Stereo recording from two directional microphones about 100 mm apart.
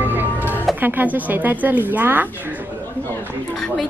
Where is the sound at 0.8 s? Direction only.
20° right (ahead or behind).